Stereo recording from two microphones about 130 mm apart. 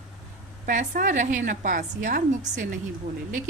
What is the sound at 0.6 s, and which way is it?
A woman's voice, 90° right.